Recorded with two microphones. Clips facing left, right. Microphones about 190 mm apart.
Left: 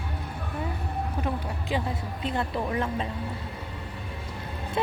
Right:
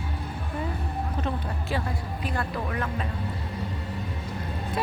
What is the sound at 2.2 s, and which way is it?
Speech, 25° left (ahead or behind).